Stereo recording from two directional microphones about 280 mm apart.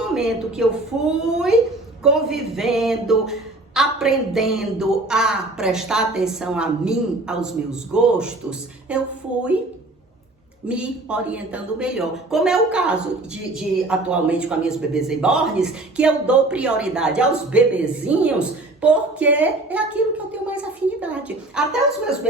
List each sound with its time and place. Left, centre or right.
0.0 s a man's voice: centre
10.7 s a man's voice: centre